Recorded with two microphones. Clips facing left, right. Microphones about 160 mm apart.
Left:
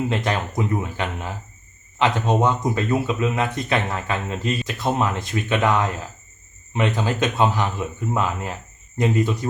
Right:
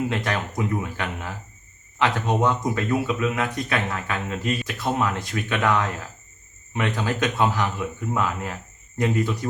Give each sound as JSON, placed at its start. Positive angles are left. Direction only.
{"t": 0.1, "sound": "speech", "side_deg": 25}